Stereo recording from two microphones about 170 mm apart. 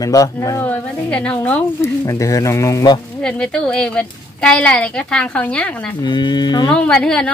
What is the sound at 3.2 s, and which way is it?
A woman's voice, 5° left (ahead or behind).